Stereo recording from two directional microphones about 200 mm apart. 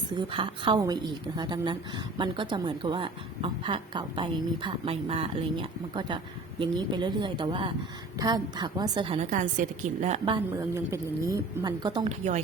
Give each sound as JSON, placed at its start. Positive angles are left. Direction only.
{"t": 0.1, "sound": "a woman's voice", "side_deg": -25}